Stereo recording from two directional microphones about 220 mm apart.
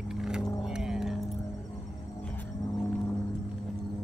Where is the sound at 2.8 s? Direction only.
10° left (ahead or behind).